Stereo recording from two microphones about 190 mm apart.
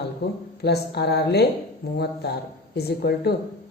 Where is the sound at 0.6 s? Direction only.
60° left (ahead or behind).